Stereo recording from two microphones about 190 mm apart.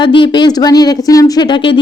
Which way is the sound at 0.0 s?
25° left (ahead or behind).